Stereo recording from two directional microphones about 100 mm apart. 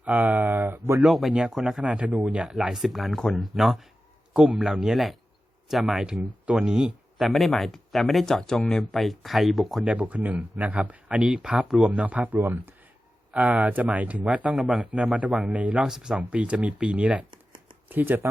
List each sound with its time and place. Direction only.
0.0 s speech: 15° right (ahead or behind)
1.0 s speech: centre (ahead or behind)
9.8 s speech: 10° right (ahead or behind)
17.3 s a sound: 55° right (ahead or behind)
17.8 s speech: 20° right (ahead or behind)